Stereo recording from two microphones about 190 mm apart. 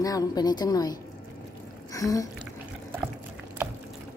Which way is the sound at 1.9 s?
15° left (ahead or behind).